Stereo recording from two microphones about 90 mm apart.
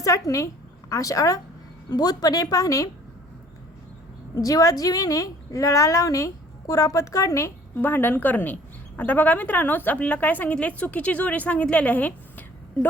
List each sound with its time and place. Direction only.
0.0 s a woman's voice: 35° left (ahead or behind)
4.4 s a woman's voice: 40° left (ahead or behind); by 12.9 s 20° left (ahead or behind)